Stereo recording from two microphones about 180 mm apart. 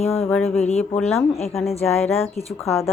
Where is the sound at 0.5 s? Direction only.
35° left (ahead or behind).